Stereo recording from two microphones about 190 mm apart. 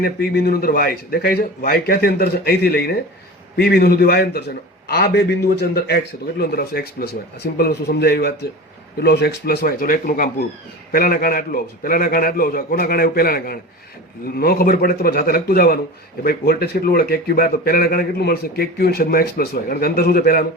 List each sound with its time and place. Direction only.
0.0 s a man's voice: 55° left (ahead or behind)